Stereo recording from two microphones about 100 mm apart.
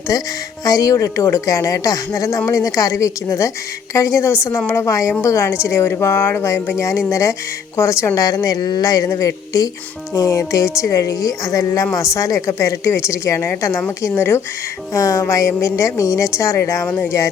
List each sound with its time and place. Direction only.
0.1 s a woman's voice: 35° left (ahead or behind)